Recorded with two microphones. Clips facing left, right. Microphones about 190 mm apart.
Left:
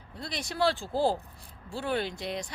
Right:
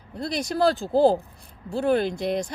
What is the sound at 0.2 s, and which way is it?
Speech, 45° right (ahead or behind).